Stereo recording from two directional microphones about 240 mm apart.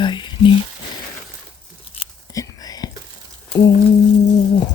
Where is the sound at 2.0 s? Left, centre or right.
Centre.